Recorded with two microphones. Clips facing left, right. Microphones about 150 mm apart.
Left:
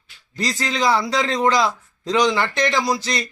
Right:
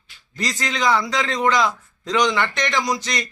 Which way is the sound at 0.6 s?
35° left (ahead or behind).